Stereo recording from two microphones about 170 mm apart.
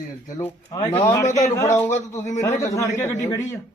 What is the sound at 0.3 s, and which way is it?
A man's voice, 20° left (ahead or behind).